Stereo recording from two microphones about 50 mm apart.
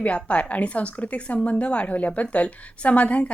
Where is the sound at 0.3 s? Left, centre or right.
Left.